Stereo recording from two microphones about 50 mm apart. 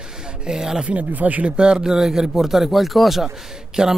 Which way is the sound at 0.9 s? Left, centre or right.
Right.